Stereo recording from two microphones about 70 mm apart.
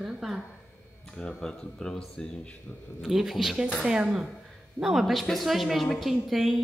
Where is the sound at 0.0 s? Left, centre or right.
Centre.